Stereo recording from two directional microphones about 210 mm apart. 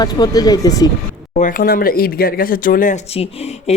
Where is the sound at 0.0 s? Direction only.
20° left (ahead or behind).